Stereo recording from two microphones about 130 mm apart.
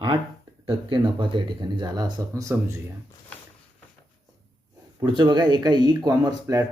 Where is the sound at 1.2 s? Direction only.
35° right (ahead or behind).